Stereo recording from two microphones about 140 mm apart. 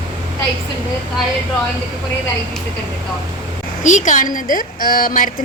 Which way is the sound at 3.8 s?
60° left (ahead or behind).